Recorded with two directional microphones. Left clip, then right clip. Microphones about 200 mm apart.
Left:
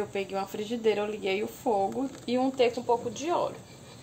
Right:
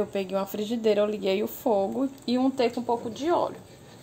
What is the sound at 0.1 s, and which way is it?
A woman's voice, 45° right (ahead or behind).